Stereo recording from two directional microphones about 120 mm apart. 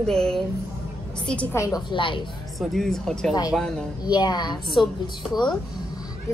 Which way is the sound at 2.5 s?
Centre (ahead or behind).